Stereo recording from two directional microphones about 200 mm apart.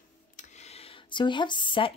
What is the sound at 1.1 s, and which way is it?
Speech, 25° left (ahead or behind).